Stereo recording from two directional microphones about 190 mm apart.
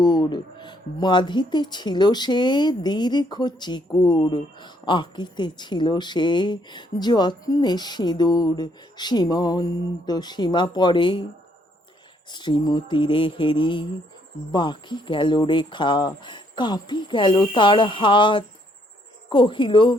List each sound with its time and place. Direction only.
0.0 s speech: 20° left (ahead or behind)
12.3 s speech: 25° left (ahead or behind)